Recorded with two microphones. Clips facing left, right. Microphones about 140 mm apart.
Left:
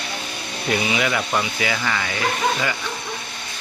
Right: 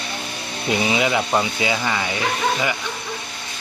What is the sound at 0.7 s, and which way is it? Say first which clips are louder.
Speech: right 2 dB; 25° right (ahead or behind).